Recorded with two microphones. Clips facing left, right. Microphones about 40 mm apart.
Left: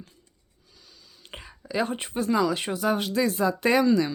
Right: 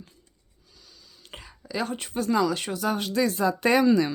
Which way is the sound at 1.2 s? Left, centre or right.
Centre.